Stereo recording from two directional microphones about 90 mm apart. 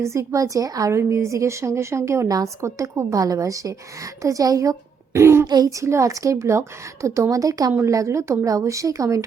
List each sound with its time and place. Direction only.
0.0 s a woman's voice: 30° right (ahead or behind)
5.5 s a child's voice: 45° right (ahead or behind)
5.8 s a woman's voice: 35° right (ahead or behind)